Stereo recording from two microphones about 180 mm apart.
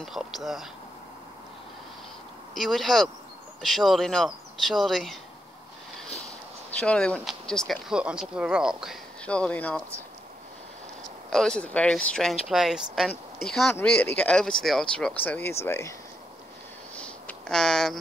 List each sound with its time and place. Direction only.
0.0 s speech: centre (ahead or behind)
2.5 s speech: centre (ahead or behind)
6.7 s speech: 5° left (ahead or behind)
9.2 s speech: 5° left (ahead or behind)
11.2 s speech: 5° left (ahead or behind)
16.9 s a sound: 5° left (ahead or behind)